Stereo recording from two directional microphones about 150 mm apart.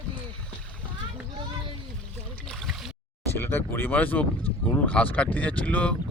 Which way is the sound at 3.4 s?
15° left (ahead or behind).